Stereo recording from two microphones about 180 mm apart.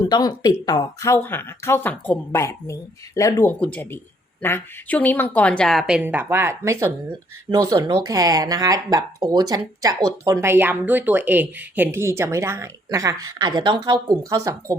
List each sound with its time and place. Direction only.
0.0 s a woman's voice: 20° left (ahead or behind); by 14.8 s 20° right (ahead or behind)